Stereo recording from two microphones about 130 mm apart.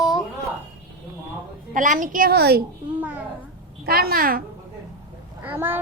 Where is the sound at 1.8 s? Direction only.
90° right.